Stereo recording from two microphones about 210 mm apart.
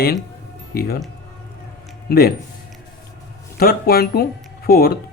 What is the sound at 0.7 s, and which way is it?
Speech, 45° left (ahead or behind).